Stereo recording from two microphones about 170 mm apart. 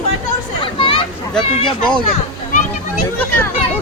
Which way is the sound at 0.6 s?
30° left (ahead or behind).